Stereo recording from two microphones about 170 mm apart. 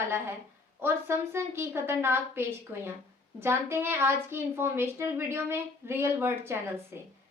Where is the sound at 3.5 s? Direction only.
15° right (ahead or behind).